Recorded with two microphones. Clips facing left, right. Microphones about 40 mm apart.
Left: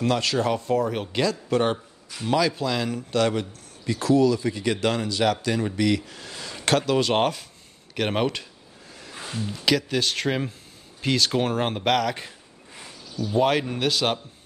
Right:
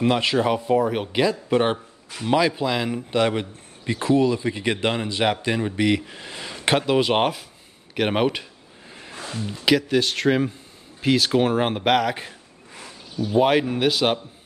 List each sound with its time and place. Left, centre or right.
0.0 s speech: right
9.5 s speech: centre